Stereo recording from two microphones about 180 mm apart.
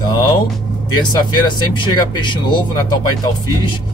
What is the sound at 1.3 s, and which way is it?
Speech, 25° left (ahead or behind).